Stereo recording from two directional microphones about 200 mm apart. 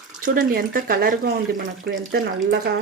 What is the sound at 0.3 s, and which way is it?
Speech, 45° right (ahead or behind).